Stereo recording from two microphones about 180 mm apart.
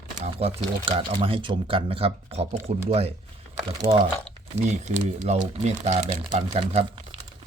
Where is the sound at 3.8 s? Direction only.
30° right (ahead or behind).